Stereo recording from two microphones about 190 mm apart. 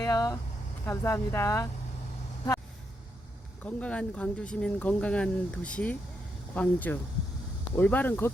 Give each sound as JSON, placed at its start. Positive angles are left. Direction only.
{"t": 0.0, "sound": "speech", "side_deg": 20}
{"t": 3.6, "sound": "speech", "side_deg": 5}